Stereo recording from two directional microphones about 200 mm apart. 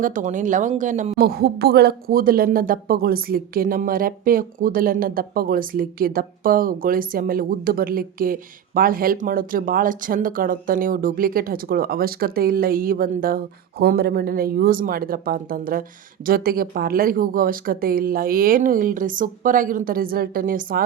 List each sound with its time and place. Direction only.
0.0 s speech: 40° right (ahead or behind)